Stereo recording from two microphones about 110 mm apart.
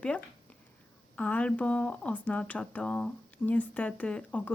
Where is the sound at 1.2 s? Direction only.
15° left (ahead or behind).